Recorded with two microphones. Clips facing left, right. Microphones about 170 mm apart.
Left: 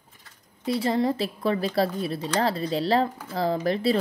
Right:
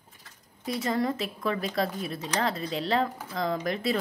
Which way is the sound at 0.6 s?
30° left (ahead or behind).